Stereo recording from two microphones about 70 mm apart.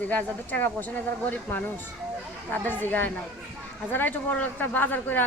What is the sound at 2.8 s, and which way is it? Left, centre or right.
Speech, left.